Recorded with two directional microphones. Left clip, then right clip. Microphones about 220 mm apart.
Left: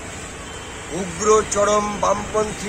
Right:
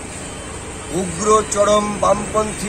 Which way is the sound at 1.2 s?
5° left (ahead or behind).